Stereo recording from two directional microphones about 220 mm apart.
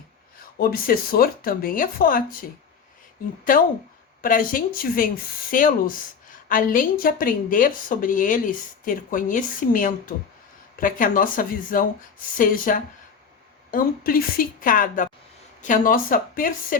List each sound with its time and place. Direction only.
0.6 s a woman's voice: 40° left (ahead or behind)
4.2 s a woman's voice: 40° left (ahead or behind)